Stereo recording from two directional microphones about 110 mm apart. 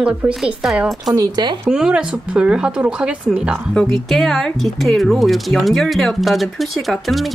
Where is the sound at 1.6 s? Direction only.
10° right (ahead or behind).